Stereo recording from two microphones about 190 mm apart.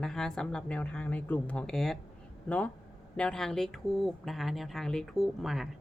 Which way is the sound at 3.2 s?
5° left (ahead or behind).